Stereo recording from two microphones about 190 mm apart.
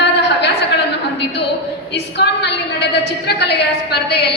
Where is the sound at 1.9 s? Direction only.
60° left (ahead or behind).